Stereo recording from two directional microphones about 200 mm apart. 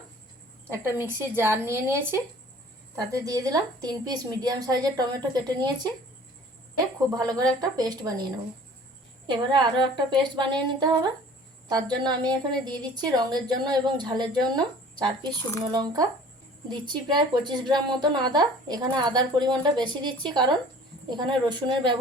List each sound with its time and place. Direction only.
0.7 s a woman's voice: 10° right (ahead or behind)
7.1 s a woman's voice: 20° right (ahead or behind)
9.2 s a woman's voice: 25° right (ahead or behind)
15.7 s a woman's voice: 20° right (ahead or behind)